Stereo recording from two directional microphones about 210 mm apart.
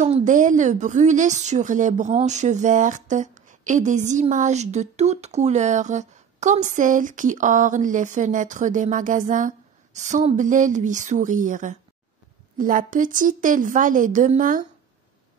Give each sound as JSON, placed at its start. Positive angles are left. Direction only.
{"t": 0.0, "sound": "a woman's voice", "side_deg": -35}